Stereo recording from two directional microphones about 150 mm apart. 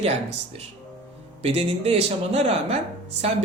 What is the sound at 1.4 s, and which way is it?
Speech, 40° right (ahead or behind).